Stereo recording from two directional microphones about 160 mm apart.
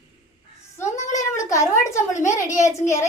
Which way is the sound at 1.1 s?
20° left (ahead or behind).